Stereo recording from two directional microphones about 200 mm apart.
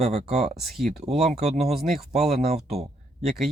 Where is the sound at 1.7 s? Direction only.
Centre (ahead or behind).